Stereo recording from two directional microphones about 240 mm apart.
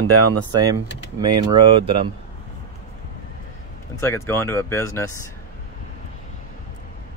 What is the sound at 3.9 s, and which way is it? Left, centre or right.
Speech, centre.